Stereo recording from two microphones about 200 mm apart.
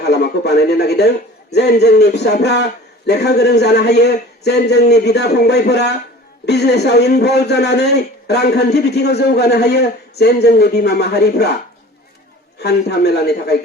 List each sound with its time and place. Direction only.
0.0 s a man's voice: 55° left (ahead or behind)
12.5 s a man's voice: 55° left (ahead or behind)